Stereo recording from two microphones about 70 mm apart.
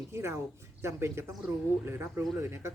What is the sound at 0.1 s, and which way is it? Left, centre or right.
Speech, right.